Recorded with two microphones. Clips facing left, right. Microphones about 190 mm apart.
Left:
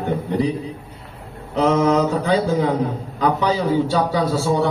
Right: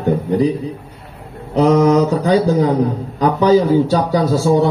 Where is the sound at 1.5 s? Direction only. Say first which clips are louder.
Right 5 dB; 40° right (ahead or behind).